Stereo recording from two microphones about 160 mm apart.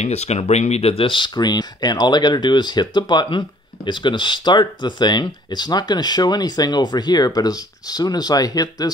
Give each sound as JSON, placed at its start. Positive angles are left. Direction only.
{"t": 0.0, "sound": "speech", "side_deg": 45}